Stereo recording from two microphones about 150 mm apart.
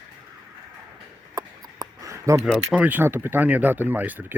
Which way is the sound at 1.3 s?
25° right (ahead or behind).